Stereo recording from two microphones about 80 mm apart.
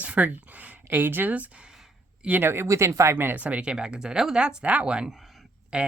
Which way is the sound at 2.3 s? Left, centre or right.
Right.